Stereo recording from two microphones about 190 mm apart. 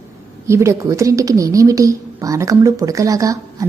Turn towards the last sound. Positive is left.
turn(degrees=-20)  # may be behind; listen again after turning